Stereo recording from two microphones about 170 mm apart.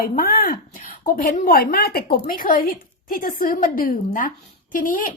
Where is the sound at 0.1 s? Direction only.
60° left (ahead or behind).